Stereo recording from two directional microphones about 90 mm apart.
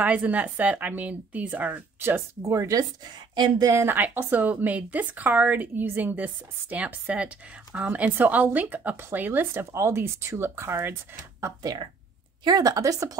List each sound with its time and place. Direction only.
0.0 s a woman's voice: 15° right (ahead or behind); by 2.9 s 40° right (ahead or behind)
3.3 s speech: 50° right (ahead or behind)
3.7 s speech: 25° right (ahead or behind)
11.4 s speech: 45° right (ahead or behind)